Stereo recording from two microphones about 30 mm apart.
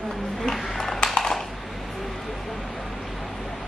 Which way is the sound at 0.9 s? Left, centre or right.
Left.